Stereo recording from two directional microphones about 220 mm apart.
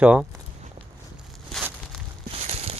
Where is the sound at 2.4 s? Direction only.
25° right (ahead or behind).